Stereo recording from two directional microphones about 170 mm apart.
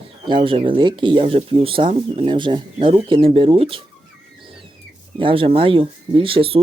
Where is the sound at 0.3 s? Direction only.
30° right (ahead or behind).